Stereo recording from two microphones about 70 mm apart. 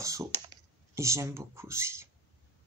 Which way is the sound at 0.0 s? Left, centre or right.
Right.